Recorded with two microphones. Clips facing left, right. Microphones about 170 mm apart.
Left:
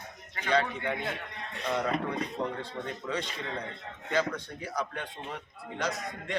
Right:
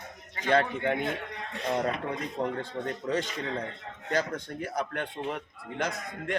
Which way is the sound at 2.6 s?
45° right (ahead or behind).